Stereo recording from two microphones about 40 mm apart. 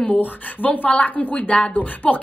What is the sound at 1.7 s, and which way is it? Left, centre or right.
Speech, left.